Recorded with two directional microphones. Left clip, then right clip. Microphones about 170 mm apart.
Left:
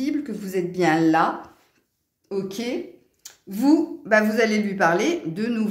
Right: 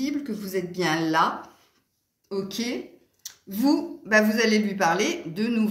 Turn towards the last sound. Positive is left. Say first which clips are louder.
# left 1 dB
turn(degrees=40)  # may be behind; listen again after turning